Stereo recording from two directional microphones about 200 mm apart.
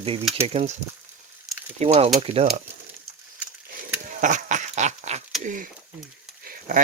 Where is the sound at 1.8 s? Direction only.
30° right (ahead or behind).